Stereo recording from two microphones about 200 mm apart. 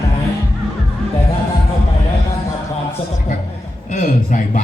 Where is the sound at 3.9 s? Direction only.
40° left (ahead or behind).